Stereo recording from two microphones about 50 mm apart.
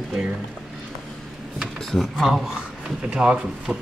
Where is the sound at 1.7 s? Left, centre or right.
Centre.